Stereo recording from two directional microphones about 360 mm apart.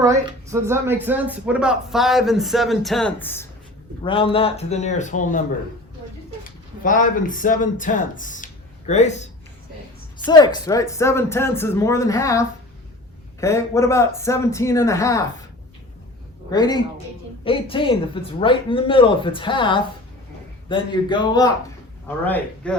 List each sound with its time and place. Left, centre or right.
0.0 s speech: centre; by 5.4 s left
6.4 s a man's voice: left
16.5 s speech: centre